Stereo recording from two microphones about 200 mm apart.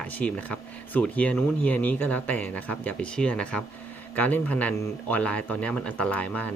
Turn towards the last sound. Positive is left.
turn(degrees=5)  # may be behind; listen again after turning